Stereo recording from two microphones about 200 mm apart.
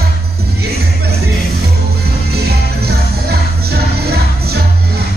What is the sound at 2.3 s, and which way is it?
Music, 55° right (ahead or behind).